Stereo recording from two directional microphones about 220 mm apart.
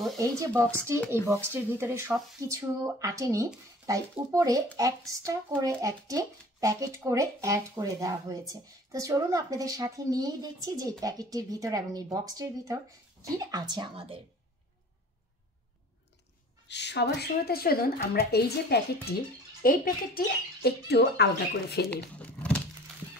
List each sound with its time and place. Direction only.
0.2 s a child's voice: 15° right (ahead or behind)
16.6 s speech: 50° left (ahead or behind)
21.9 s speech: 5° left (ahead or behind)